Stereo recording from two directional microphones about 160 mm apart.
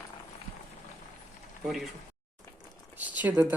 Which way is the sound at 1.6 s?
Centre (ahead or behind).